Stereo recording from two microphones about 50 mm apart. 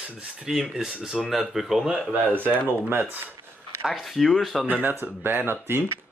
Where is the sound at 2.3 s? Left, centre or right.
Right.